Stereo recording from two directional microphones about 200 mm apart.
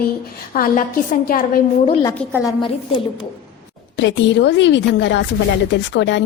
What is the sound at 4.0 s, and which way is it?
Speech, 65° left (ahead or behind).